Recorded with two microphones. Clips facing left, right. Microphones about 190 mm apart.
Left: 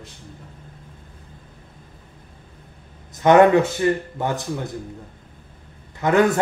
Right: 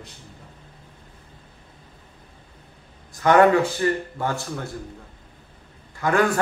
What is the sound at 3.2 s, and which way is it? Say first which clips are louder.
Speech: left 3 dB; 20° left (ahead or behind).